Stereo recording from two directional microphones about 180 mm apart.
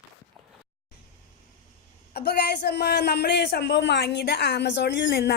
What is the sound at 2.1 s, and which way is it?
A man's voice, 65° left (ahead or behind).